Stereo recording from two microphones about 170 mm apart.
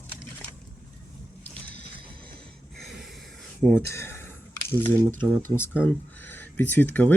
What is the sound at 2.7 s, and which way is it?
Snort, centre (ahead or behind).